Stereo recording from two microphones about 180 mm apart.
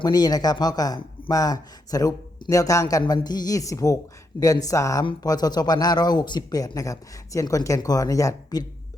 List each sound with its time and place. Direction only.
0.0 s speech: 20° left (ahead or behind)